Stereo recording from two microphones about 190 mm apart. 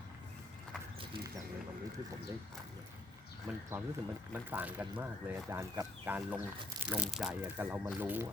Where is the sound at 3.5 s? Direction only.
10° right (ahead or behind).